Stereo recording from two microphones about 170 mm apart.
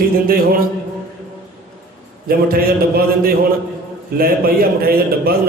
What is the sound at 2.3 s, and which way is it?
Speech, 60° right (ahead or behind).